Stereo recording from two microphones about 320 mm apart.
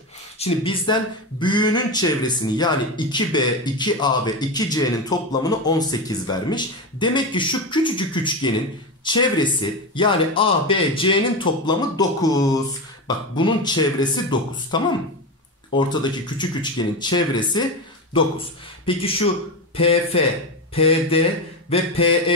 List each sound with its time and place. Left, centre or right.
0.4 s speech: centre
18.9 s speech: centre